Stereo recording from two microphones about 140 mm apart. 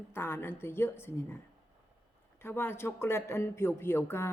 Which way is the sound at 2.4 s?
15° left (ahead or behind).